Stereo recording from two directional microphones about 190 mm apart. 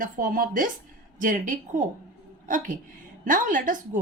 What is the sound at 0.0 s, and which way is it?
A woman's voice, 45° right (ahead or behind).